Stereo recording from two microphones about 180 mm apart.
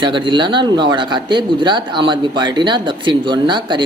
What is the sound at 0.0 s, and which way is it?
Speech, 25° right (ahead or behind).